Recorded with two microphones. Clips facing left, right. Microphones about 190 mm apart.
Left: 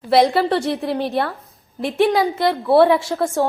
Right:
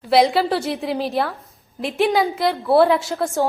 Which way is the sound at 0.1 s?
Centre (ahead or behind).